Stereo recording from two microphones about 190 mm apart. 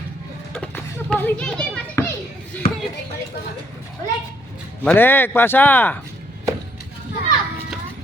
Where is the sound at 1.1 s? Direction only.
10° left (ahead or behind).